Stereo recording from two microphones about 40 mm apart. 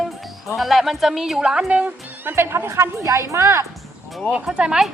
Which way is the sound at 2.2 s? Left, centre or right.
Right.